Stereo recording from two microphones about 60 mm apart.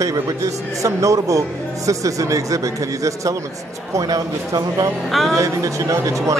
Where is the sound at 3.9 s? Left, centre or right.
Right.